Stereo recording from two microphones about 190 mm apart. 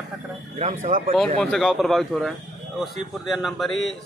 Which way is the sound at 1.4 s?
Centre (ahead or behind).